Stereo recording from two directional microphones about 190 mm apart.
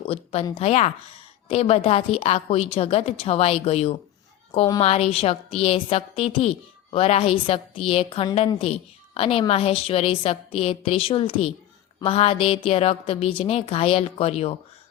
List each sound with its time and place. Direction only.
0.1 s a woman's voice: 35° left (ahead or behind)